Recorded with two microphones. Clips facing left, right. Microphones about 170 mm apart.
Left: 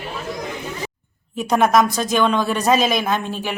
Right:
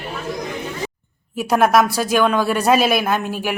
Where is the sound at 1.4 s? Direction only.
5° right (ahead or behind).